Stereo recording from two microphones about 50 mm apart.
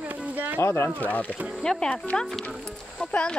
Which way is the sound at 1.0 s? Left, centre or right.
Left.